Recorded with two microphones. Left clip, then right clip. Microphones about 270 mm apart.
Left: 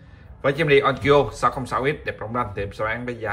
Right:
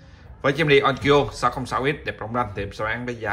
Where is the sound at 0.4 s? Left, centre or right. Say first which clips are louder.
Even; centre.